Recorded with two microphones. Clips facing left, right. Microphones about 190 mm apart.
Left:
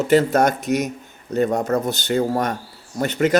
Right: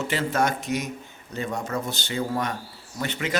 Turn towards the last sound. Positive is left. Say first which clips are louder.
# left 10 dB
turn(degrees=45)  # may be behind; listen again after turning